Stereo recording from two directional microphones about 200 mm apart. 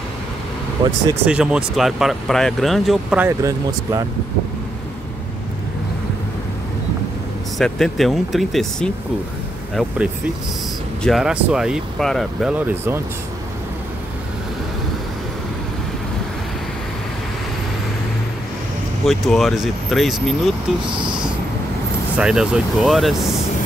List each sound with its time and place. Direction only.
0.8 s speech: 20° right (ahead or behind)
1.2 s speech: 5° right (ahead or behind)
7.5 s speech: centre (ahead or behind)
11.0 s speech: centre (ahead or behind)
19.0 s speech: centre (ahead or behind)
20.9 s speech: 25° right (ahead or behind)
22.1 s speech: 5° right (ahead or behind)